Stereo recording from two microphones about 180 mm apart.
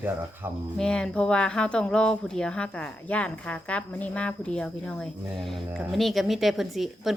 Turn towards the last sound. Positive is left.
turn(degrees=0)  # may be behind; listen again after turning